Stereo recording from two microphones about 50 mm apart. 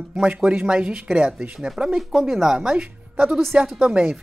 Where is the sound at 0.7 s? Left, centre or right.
Centre.